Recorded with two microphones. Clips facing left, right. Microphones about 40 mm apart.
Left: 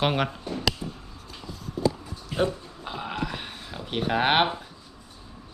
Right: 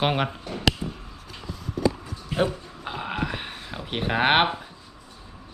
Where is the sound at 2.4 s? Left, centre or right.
Centre.